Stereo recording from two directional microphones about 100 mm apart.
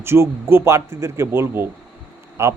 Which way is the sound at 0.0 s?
25° right (ahead or behind).